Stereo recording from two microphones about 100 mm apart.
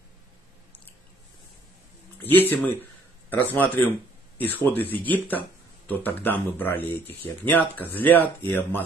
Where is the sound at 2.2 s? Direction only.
20° left (ahead or behind).